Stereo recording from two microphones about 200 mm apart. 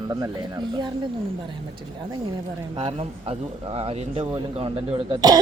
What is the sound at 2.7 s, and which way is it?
Speech, 30° right (ahead or behind).